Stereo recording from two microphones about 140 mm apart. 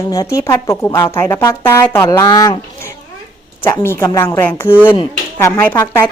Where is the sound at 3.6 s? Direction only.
20° left (ahead or behind).